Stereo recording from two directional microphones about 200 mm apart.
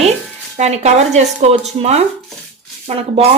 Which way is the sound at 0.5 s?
35° right (ahead or behind).